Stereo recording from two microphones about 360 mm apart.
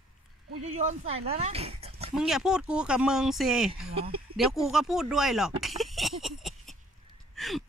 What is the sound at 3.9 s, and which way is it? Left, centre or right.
Speech, centre.